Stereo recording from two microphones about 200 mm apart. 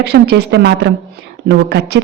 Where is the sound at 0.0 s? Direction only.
55° right (ahead or behind).